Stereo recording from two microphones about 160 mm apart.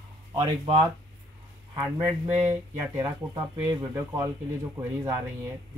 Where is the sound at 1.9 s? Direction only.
15° right (ahead or behind).